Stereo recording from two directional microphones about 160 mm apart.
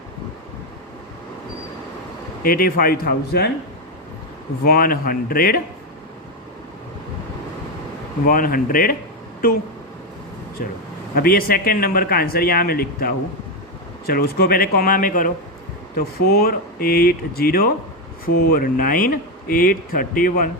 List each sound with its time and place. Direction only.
2.4 s a man's voice: 65° left (ahead or behind)
4.6 s a man's voice: 70° left (ahead or behind)
8.3 s speech: 60° left (ahead or behind)
10.6 s a man's voice: 65° left (ahead or behind)
16.0 s a man's voice: 70° left (ahead or behind)